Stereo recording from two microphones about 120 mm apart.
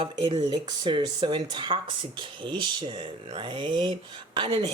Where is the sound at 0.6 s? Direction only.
35° right (ahead or behind).